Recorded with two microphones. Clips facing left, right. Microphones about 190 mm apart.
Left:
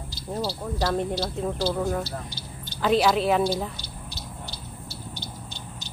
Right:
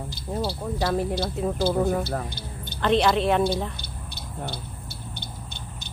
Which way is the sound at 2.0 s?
55° right (ahead or behind).